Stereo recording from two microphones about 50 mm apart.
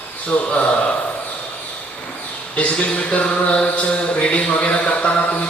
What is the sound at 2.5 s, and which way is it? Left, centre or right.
A man's voice, left.